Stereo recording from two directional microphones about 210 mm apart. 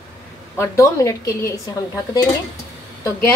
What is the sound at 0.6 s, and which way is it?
Speech, 15° left (ahead or behind).